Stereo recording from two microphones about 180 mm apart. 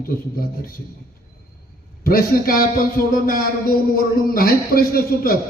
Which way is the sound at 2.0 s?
55° left (ahead or behind).